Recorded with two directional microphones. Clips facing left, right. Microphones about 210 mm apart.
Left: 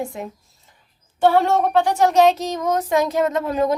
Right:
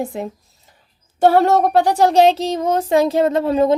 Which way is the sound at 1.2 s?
40° right (ahead or behind).